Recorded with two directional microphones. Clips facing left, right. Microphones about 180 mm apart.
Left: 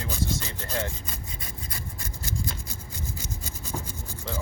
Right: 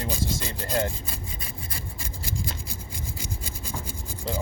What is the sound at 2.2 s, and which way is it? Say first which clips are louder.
Rub: even; 10° right (ahead or behind).